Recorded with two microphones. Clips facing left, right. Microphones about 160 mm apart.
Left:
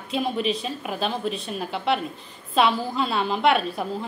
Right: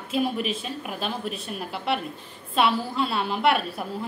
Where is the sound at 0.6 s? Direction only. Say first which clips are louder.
Left 3 dB; 35° left (ahead or behind).